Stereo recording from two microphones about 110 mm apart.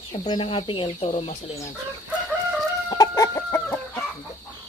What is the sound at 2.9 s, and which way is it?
Chicken, 30° left (ahead or behind).